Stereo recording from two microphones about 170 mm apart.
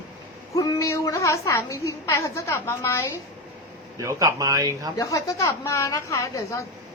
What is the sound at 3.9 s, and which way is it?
Speech, 15° right (ahead or behind).